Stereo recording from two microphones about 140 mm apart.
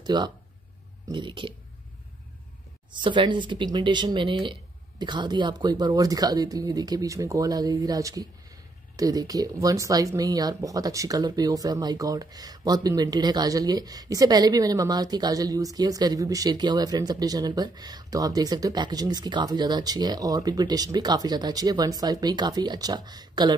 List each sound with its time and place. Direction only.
0.0 s speech: 30° right (ahead or behind)
2.9 s speech: 35° right (ahead or behind)